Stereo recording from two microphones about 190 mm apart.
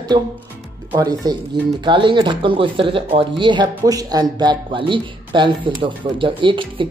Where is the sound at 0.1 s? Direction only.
25° right (ahead or behind).